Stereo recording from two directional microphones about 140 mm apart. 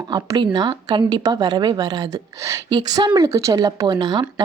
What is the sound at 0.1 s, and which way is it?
A woman's voice, 30° right (ahead or behind).